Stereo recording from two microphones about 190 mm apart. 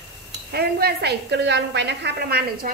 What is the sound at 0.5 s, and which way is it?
A woman's voice, 60° right (ahead or behind).